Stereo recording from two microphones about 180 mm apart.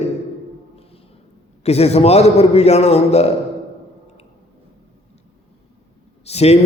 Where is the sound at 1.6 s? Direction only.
35° left (ahead or behind).